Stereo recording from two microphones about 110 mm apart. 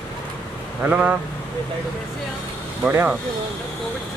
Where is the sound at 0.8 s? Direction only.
15° right (ahead or behind).